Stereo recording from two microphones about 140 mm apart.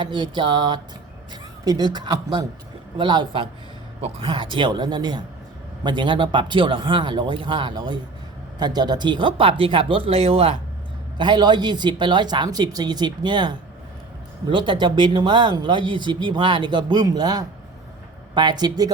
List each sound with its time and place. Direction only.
0.0 s speech: 35° right (ahead or behind)
11.2 s speech: 30° right (ahead or behind)